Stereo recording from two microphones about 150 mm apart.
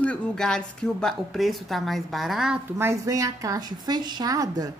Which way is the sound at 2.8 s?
20° right (ahead or behind).